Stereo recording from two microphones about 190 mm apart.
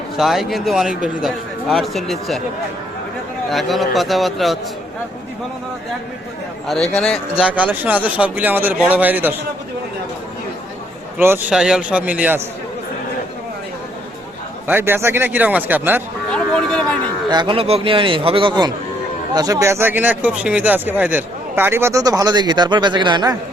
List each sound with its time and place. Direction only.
0.2 s speech: centre (ahead or behind)
3.5 s speech: centre (ahead or behind)
6.9 s speech: 5° left (ahead or behind)
11.2 s speech: 10° right (ahead or behind)
14.7 s speech: 10° right (ahead or behind)
16.3 s speech: 5° left (ahead or behind)
17.2 s a man's voice: 25° right (ahead or behind)